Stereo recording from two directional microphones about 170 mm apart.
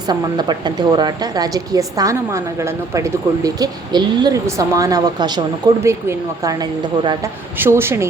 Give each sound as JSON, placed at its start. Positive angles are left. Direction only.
{"t": 0.1, "sound": "a woman's voice", "side_deg": -25}
{"t": 7.6, "sound": "speech", "side_deg": -15}